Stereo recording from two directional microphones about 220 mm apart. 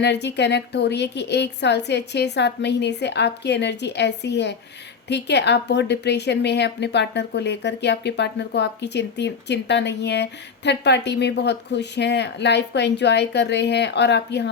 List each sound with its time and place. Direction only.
0.0 s a woman's voice: 50° left (ahead or behind)